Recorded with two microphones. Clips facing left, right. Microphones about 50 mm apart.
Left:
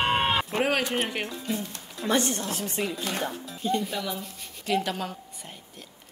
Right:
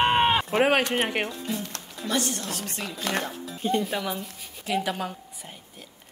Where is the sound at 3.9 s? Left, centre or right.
Right.